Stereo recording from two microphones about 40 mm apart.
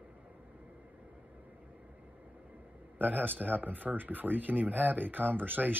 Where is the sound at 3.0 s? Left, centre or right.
Right.